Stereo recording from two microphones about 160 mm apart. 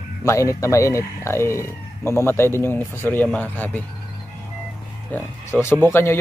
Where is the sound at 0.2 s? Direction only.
20° left (ahead or behind).